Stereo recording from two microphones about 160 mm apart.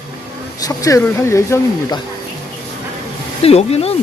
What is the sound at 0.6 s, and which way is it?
Speech, 20° left (ahead or behind).